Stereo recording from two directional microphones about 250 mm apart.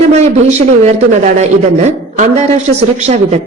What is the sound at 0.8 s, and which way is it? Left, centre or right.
Speech, right.